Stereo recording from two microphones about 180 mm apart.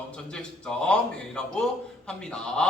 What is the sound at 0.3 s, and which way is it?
A man's voice, 5° left (ahead or behind).